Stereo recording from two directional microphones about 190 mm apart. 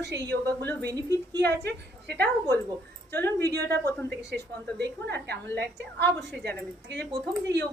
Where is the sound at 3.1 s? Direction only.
15° left (ahead or behind).